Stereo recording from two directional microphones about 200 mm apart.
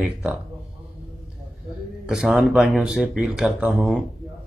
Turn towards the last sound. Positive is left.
turn(degrees=-5)  # may be behind; listen again after turning